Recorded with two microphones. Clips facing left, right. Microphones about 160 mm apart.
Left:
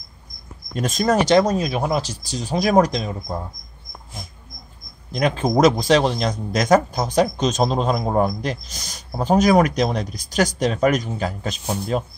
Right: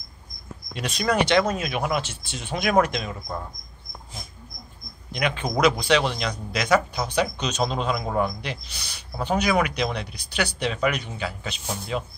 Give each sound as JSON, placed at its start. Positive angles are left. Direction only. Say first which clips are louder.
{"t": 0.7, "sound": "a man's voice", "louder": "left 5 dB", "side_deg": 45}
{"t": 5.1, "sound": "a man's voice", "louder": "left 7 dB", "side_deg": 40}